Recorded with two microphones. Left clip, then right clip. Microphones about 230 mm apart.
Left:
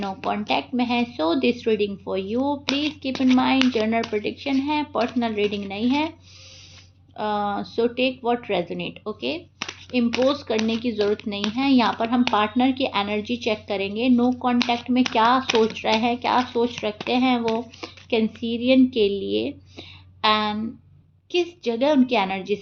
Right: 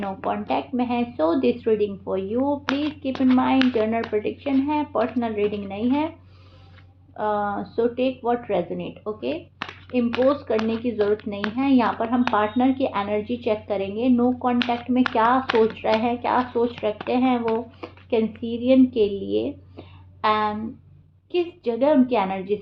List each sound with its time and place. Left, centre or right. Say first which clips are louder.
0.0 s speech: even; left
7.2 s a woman's voice: right 1 dB; left